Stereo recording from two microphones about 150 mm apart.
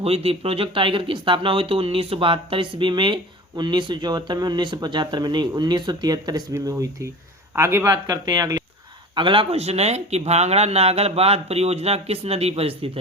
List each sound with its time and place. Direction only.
0.0 s a man's voice: 40° right (ahead or behind); by 8.6 s 25° right (ahead or behind)
9.1 s speech: 35° right (ahead or behind)